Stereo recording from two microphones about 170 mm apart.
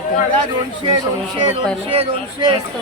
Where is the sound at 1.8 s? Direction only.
35° right (ahead or behind).